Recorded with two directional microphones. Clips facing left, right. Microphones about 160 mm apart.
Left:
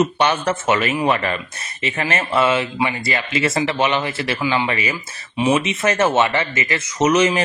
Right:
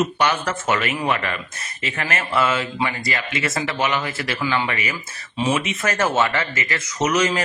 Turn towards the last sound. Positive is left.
turn(degrees=30)  # may be behind; listen again after turning